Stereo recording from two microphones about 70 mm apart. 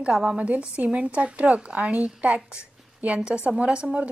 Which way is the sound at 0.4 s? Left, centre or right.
Centre.